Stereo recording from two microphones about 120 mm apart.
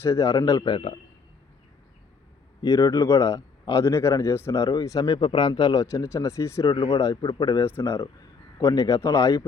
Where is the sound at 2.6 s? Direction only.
30° left (ahead or behind).